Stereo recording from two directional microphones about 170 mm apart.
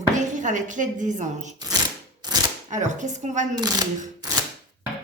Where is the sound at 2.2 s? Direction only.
25° right (ahead or behind).